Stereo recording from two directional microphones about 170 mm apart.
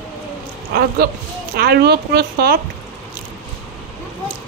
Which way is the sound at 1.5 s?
65° right (ahead or behind).